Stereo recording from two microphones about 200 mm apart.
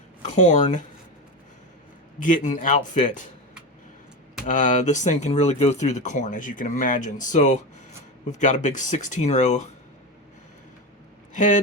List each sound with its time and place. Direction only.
0.2 s speech: 35° left (ahead or behind)
2.1 s speech: 40° left (ahead or behind)
4.4 s speech: 40° left (ahead or behind)
11.3 s speech: 40° left (ahead or behind)